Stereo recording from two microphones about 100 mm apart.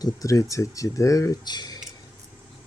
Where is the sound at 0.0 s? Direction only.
35° left (ahead or behind).